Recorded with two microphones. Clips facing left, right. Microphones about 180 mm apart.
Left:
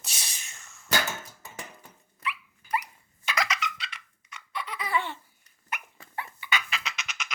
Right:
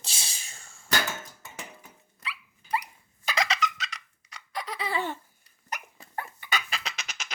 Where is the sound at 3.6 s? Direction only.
40° right (ahead or behind).